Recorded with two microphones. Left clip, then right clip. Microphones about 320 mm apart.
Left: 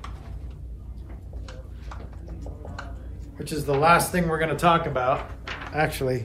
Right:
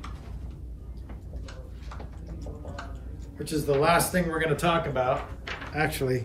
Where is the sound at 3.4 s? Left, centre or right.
Centre.